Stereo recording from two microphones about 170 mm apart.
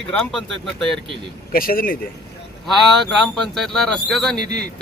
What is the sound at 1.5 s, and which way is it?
Speech, 55° left (ahead or behind).